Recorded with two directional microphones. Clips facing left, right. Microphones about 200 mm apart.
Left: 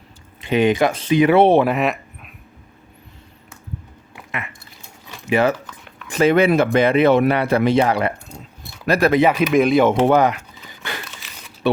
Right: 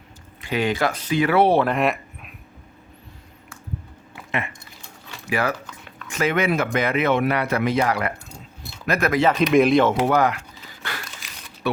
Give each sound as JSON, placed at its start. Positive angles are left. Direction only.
{"t": 0.4, "sound": "speech", "side_deg": 20}
{"t": 1.6, "sound": "speech", "side_deg": 0}
{"t": 5.3, "sound": "speech", "side_deg": 25}
{"t": 9.2, "sound": "speech", "side_deg": 10}
{"t": 9.8, "sound": "speech", "side_deg": 20}
{"t": 11.6, "sound": "speech", "side_deg": 25}